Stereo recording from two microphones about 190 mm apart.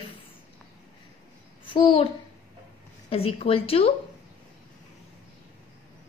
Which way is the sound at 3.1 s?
30° left (ahead or behind).